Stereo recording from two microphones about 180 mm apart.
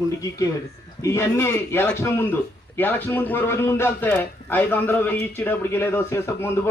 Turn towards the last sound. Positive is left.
turn(degrees=15)  # may be behind; listen again after turning